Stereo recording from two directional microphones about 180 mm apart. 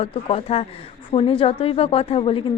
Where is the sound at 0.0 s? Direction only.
30° left (ahead or behind).